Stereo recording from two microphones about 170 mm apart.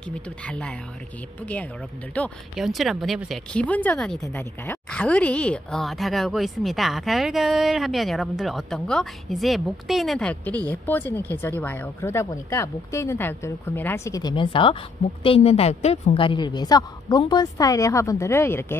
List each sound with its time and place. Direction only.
0.1 s a woman's voice: 5° left (ahead or behind)